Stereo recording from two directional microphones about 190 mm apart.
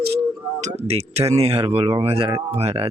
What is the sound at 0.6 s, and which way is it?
A man's voice, 35° right (ahead or behind).